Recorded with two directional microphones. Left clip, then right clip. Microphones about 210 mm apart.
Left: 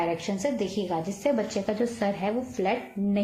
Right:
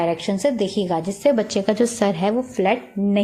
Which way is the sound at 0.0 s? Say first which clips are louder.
Right 7 dB; 45° right (ahead or behind).